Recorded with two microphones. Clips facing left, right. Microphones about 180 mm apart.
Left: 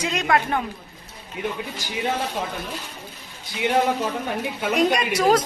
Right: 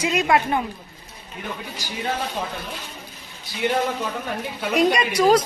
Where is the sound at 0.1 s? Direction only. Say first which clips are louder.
Right 3 dB; 5° right (ahead or behind).